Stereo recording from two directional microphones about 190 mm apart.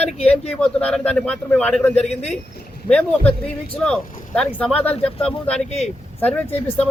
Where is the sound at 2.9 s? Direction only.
5° left (ahead or behind).